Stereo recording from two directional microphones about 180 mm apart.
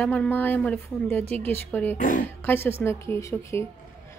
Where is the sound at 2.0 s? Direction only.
50° left (ahead or behind).